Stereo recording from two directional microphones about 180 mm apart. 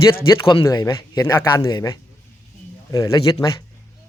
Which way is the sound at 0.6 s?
20° left (ahead or behind).